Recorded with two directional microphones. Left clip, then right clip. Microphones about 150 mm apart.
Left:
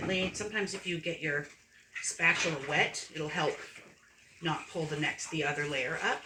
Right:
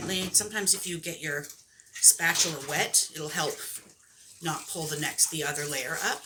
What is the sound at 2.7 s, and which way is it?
Speech, 10° left (ahead or behind).